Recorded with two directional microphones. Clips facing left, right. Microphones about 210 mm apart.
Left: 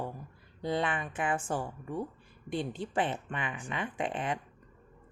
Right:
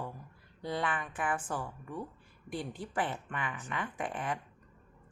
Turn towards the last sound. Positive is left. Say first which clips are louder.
# left 3 dB
turn(degrees=20)  # may be behind; listen again after turning